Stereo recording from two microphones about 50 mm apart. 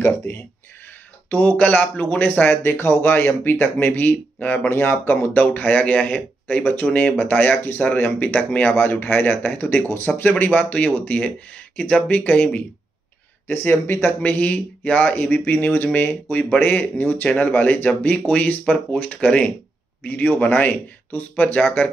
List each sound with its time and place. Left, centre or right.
1.3 s speech: left
2.5 s speech: left
13.7 s speech: left
14.2 s speech: left
19.2 s speech: left
20.0 s speech: left